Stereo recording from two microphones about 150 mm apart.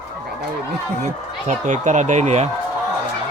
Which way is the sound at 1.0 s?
55° right (ahead or behind).